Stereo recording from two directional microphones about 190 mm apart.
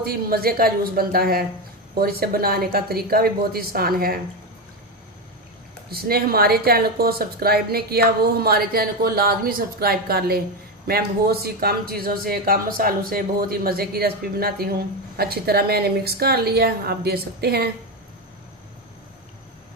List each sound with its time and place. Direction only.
0.0 s speech: 50° right (ahead or behind)
5.9 s speech: 50° right (ahead or behind)